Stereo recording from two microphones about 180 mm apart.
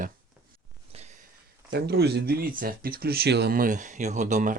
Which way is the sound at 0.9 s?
35° right (ahead or behind).